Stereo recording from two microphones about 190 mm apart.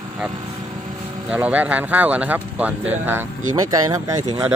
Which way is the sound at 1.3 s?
5° right (ahead or behind).